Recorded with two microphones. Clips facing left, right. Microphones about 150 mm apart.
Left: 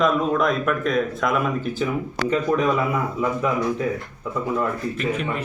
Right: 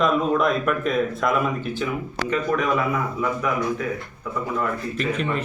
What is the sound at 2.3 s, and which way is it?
Speech, 30° left (ahead or behind).